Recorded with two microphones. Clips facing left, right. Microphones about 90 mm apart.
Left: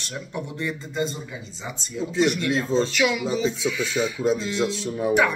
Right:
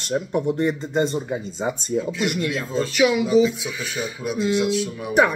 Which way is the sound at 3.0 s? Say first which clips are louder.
Right 5 dB; 20° right (ahead or behind).